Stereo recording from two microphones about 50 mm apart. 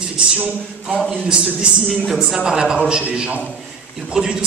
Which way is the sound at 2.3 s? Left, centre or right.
Centre.